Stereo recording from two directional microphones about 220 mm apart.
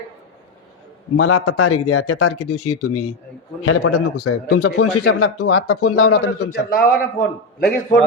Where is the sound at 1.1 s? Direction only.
80° left.